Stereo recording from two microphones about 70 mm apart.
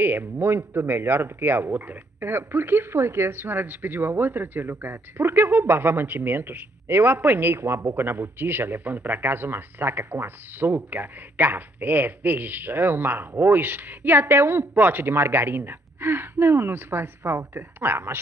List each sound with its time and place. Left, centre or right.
0.0 s speech: right